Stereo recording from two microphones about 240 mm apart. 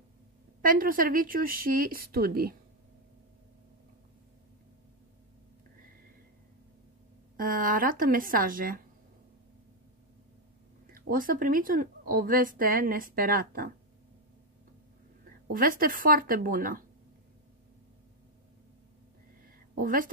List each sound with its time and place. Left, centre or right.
0.6 s a woman's voice: right
7.3 s a woman's voice: right
10.9 s a woman's voice: right
15.5 s a woman's voice: right
19.8 s a woman's voice: right